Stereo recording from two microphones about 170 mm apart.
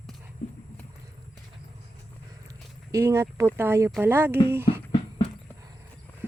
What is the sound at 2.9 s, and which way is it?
Speech, 15° right (ahead or behind).